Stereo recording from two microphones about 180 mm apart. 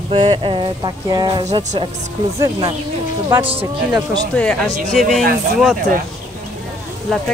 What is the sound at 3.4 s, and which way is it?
Speech, 25° right (ahead or behind).